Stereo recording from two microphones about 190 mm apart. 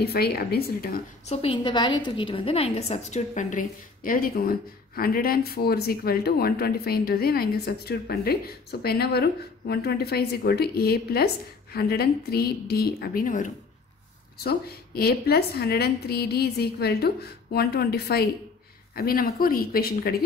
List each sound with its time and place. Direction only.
0.0 s a woman's voice: 55° left (ahead or behind)
1.2 s a woman's voice: 30° left (ahead or behind)
15.0 s a woman's voice: 55° left (ahead or behind)